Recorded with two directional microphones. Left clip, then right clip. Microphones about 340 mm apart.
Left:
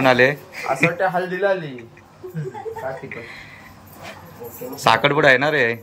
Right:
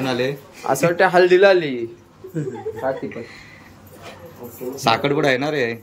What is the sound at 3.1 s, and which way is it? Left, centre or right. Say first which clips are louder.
Speech: left 1 dB; centre.